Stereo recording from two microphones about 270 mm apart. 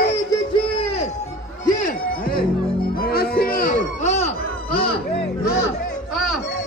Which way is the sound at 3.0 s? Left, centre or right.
Left.